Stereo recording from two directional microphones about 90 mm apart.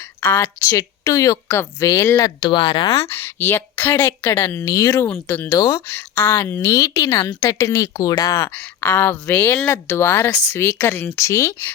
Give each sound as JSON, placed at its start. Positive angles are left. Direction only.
{"t": 0.0, "sound": "a woman's voice", "side_deg": 20}
{"t": 2.5, "sound": "speech", "side_deg": 60}
{"t": 3.1, "sound": "speech", "side_deg": 25}
{"t": 5.5, "sound": "a woman's voice", "side_deg": 40}
{"t": 5.8, "sound": "a woman's voice", "side_deg": 25}
{"t": 8.4, "sound": "speech", "side_deg": 20}